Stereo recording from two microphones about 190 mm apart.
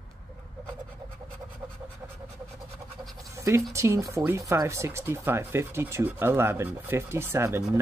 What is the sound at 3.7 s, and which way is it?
Speech, 15° right (ahead or behind).